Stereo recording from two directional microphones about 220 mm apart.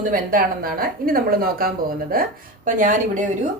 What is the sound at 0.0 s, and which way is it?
Speech, 40° right (ahead or behind).